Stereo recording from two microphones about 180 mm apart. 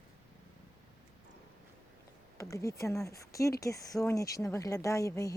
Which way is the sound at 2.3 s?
15° left (ahead or behind).